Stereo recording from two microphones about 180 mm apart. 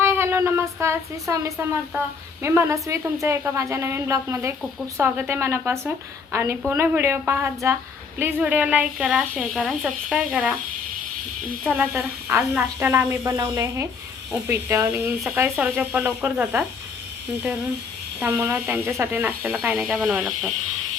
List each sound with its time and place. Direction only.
0.0 s a woman's voice: 15° right (ahead or behind)
11.6 s a woman's voice: 10° right (ahead or behind)
18.2 s a woman's voice: 15° right (ahead or behind)